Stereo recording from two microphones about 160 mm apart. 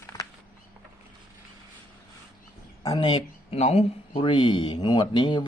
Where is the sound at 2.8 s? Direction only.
25° left (ahead or behind).